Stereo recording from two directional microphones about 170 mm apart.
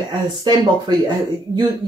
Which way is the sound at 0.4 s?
25° right (ahead or behind).